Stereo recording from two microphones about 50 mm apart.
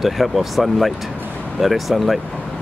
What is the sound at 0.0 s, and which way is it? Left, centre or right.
Speech, centre.